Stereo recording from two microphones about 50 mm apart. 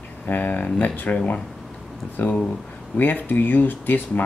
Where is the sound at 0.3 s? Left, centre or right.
Left.